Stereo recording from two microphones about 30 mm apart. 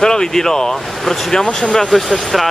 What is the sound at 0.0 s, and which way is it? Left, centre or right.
Speech, left.